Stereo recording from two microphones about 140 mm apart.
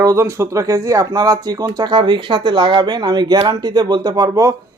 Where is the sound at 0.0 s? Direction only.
20° right (ahead or behind).